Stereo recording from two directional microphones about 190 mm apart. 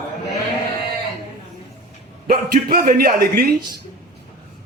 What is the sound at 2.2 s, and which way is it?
A man's voice, 50° right (ahead or behind).